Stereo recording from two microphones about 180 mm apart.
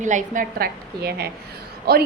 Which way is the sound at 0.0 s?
45° right (ahead or behind).